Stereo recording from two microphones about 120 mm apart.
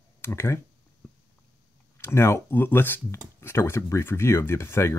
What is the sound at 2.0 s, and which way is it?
Speech, 20° left (ahead or behind).